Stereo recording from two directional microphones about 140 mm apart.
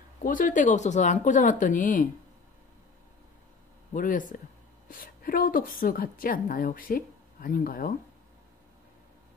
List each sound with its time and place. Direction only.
0.2 s speech: 70° left (ahead or behind)
3.9 s speech: 70° left (ahead or behind)
4.8 s a woman's voice: 90° left